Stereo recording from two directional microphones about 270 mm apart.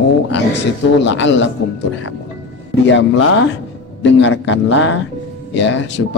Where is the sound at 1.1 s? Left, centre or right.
Left.